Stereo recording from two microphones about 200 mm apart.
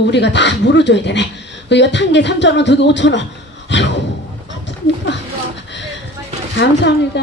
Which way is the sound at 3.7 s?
60° left (ahead or behind).